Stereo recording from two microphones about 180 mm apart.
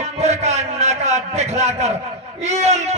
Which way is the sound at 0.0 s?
35° right (ahead or behind).